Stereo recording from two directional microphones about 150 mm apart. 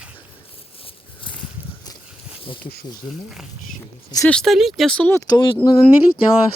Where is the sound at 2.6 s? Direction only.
90° left.